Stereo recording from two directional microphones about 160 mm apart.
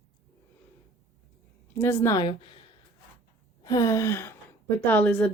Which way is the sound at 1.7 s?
15° left (ahead or behind).